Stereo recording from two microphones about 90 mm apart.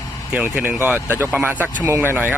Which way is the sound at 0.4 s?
25° right (ahead or behind).